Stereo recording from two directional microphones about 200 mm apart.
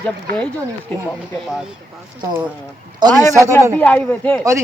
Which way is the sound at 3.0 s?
20° right (ahead or behind).